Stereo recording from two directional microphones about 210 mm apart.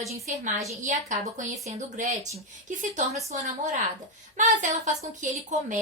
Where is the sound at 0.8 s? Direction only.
35° right (ahead or behind).